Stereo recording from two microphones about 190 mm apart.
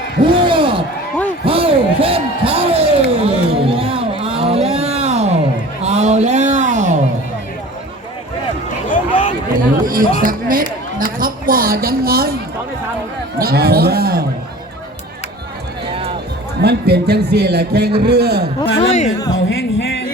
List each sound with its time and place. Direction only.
0.3 s a sound: 25° right (ahead or behind)
8.9 s run: 40° left (ahead or behind)
9.8 s music: 50° right (ahead or behind)
10.2 s a sound: 45° right (ahead or behind)
13.4 s a man's voice: 55° right (ahead or behind)
15.9 s music: 30° right (ahead or behind)
16.6 s a man's voice: 60° right (ahead or behind)
18.8 s speech: 40° left (ahead or behind)
19.5 s music: 90° left